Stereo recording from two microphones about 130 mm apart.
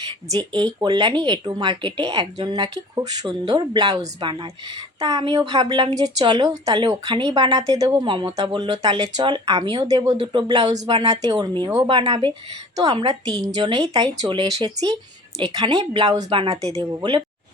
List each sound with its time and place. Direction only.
0.3 s speech: 30° right (ahead or behind)